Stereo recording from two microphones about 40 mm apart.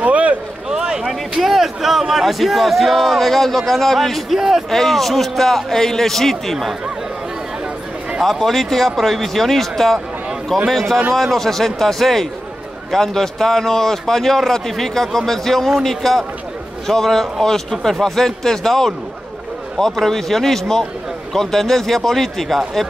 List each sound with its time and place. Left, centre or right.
0.0 s run: right
0.7 s a sound: centre
1.4 s speech: centre
4.4 s speech: centre
4.6 s speech: centre
8.2 s speech: centre